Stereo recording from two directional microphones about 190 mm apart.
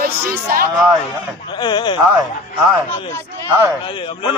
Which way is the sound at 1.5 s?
25° left (ahead or behind).